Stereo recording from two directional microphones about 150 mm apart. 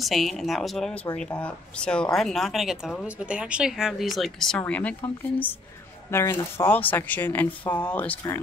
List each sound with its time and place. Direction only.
0.0 s speech: centre (ahead or behind)
6.0 s speech: 15° left (ahead or behind)